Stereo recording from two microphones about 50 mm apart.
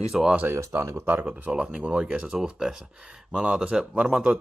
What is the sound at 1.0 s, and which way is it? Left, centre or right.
Speech, right.